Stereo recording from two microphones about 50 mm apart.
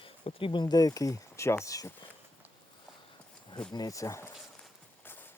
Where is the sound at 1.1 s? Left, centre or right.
Left.